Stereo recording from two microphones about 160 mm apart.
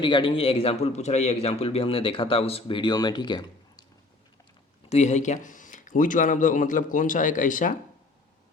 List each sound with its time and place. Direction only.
0.0 s a man's voice: 30° left (ahead or behind)
4.9 s speech: 45° left (ahead or behind)